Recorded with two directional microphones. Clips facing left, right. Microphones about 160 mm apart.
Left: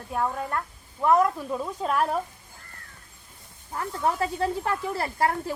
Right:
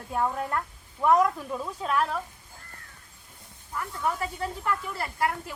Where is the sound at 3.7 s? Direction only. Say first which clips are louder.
Left 3 dB; 40° left (ahead or behind).